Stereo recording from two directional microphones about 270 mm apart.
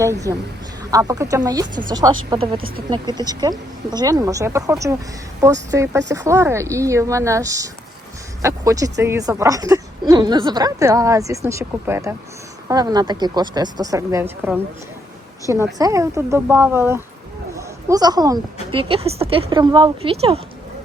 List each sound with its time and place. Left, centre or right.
0.0 s speech: centre
2.6 s speech: right
2.9 s a woman's voice: centre